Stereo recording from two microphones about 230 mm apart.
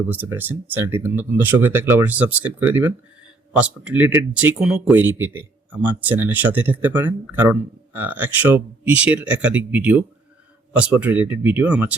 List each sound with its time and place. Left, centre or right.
0.1 s speech: centre